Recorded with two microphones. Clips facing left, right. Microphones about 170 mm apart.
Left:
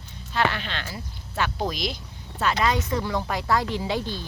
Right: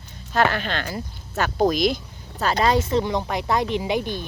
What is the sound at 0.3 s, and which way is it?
Speech, 45° right (ahead or behind).